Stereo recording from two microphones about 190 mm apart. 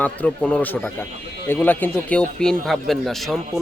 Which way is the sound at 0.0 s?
5° left (ahead or behind).